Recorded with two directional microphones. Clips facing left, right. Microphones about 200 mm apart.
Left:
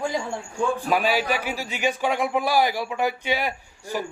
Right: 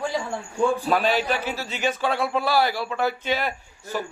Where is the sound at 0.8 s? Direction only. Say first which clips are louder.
Even; 10° left (ahead or behind).